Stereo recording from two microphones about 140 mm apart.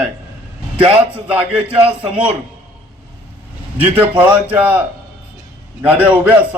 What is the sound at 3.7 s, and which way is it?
A man's voice, 15° right (ahead or behind).